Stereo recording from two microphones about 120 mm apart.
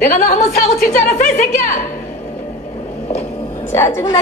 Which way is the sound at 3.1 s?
55° left (ahead or behind).